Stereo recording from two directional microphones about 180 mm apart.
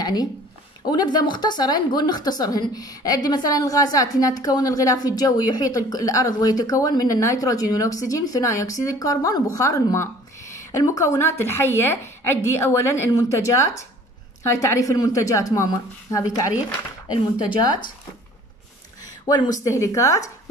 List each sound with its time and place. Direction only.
0.0 s a woman's voice: 20° left (ahead or behind)
19.2 s a woman's voice: 20° left (ahead or behind)